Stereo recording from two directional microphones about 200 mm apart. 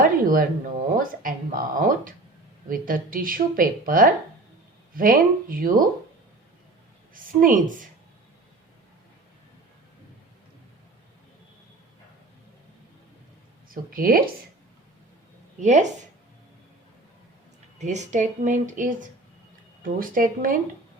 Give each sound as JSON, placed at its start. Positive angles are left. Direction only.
{"t": 0.0, "sound": "a sound", "side_deg": -45}
{"t": 0.9, "sound": "a woman's voice", "side_deg": -45}
{"t": 7.1, "sound": "a woman's voice", "side_deg": -45}
{"t": 13.7, "sound": "speech", "side_deg": -45}
{"t": 15.6, "sound": "speech", "side_deg": -35}
{"t": 17.7, "sound": "a woman's voice", "side_deg": -35}